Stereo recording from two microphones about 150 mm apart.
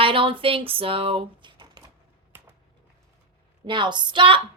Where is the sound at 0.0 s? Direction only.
35° right (ahead or behind).